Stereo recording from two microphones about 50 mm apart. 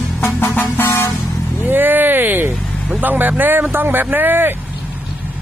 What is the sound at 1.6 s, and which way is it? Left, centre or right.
Speech, right.